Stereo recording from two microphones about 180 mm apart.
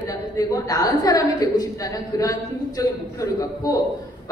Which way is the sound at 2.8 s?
20° left (ahead or behind).